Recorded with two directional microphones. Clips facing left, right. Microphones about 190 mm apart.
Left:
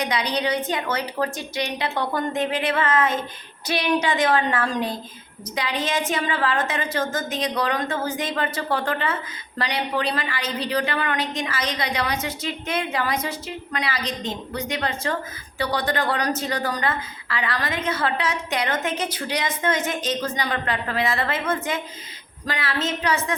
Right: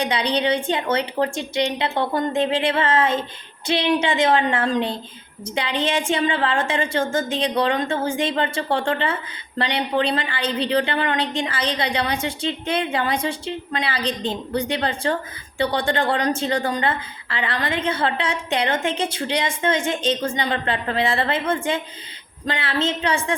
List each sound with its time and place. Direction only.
0.0 s a woman's voice: 30° right (ahead or behind)